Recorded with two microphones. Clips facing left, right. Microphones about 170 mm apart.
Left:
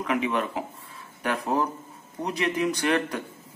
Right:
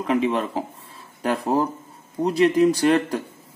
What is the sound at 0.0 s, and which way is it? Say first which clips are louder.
A man's voice: right 4 dB; 30° right (ahead or behind).